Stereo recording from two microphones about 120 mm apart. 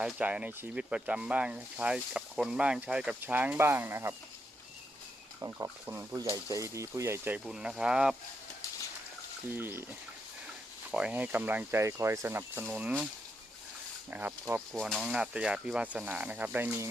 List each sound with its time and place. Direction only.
0.0 s speech: 10° right (ahead or behind)
5.4 s speech: 25° right (ahead or behind)
7.3 s speech: 5° right (ahead or behind)
9.5 s speech: 20° right (ahead or behind)
10.9 s speech: 10° right (ahead or behind)
14.1 s speech: 15° right (ahead or behind)
14.7 s speech: centre (ahead or behind); by 16.9 s 20° right (ahead or behind)